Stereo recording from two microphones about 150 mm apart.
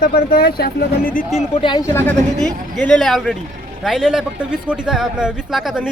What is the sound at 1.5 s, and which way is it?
Speech, 30° left (ahead or behind).